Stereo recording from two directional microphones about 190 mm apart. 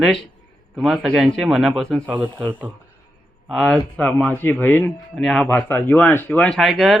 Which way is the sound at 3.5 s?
Centre (ahead or behind).